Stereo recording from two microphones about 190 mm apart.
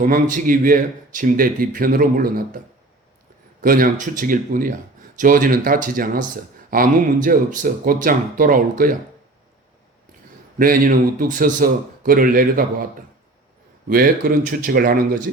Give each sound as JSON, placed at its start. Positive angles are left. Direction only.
{"t": 0.0, "sound": "speech", "side_deg": -45}
{"t": 3.6, "sound": "speech", "side_deg": -45}
{"t": 10.6, "sound": "speech", "side_deg": -45}